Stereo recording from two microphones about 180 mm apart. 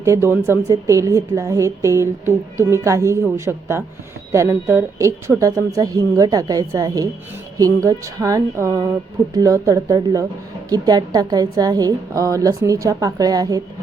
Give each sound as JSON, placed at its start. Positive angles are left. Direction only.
{"t": 0.0, "sound": "a woman's voice", "side_deg": -15}